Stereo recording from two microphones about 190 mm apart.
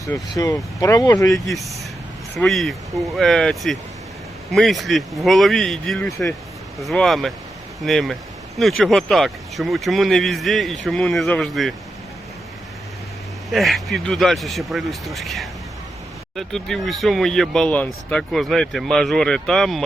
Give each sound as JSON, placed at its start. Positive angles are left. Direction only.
{"t": 0.0, "sound": "speech", "side_deg": 15}
{"t": 1.5, "sound": "speech", "side_deg": 0}
{"t": 13.5, "sound": "speech", "side_deg": 0}